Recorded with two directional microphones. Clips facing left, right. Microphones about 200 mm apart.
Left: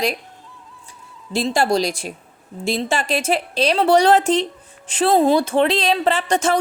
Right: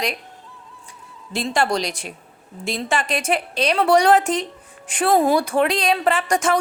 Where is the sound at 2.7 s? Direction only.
30° left (ahead or behind).